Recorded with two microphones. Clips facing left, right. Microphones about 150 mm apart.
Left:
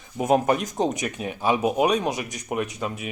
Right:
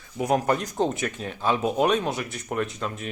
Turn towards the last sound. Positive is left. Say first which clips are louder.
# left 1 dB
turn(degrees=10)  # may be behind; listen again after turning